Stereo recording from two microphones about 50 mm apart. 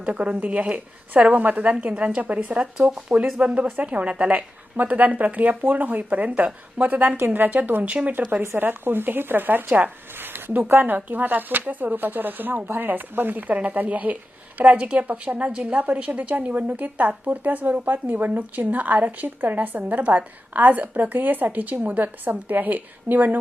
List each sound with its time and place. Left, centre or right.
0.0 s a woman's voice: right
2.5 s speech: centre
3.3 s speech: right